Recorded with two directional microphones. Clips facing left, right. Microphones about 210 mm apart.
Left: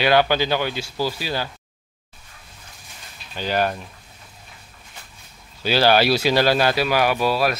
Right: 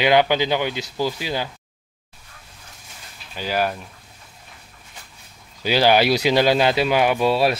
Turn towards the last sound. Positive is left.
turn(degrees=-25)  # may be behind; listen again after turning